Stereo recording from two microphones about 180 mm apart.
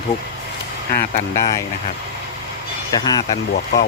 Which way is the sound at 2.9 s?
20° left (ahead or behind).